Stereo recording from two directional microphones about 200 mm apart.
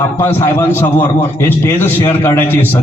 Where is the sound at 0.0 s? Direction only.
10° left (ahead or behind).